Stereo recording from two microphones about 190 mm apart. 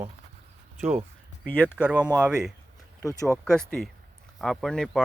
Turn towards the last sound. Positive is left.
turn(degrees=5)  # may be behind; listen again after turning